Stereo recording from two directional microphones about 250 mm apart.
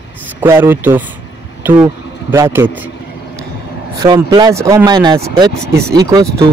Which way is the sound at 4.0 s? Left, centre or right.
Centre.